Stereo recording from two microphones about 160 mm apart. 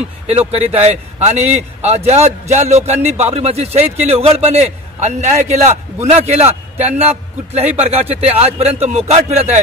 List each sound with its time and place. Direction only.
0.3 s a man's voice: 40° right (ahead or behind)